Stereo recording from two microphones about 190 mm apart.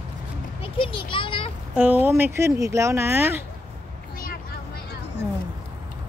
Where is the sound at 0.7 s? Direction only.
25° left (ahead or behind).